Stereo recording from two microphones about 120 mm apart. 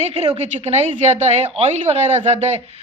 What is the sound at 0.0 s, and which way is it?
A woman's voice, 60° right (ahead or behind).